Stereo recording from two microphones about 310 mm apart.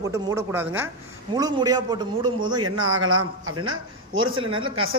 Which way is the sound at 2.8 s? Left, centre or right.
Right.